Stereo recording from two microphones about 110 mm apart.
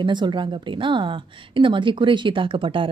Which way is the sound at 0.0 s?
45° right (ahead or behind).